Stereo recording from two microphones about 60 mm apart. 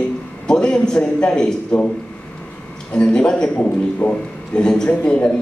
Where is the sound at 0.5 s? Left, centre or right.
Centre.